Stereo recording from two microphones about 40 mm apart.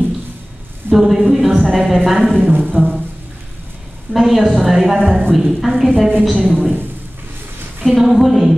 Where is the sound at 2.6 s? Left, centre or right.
Left.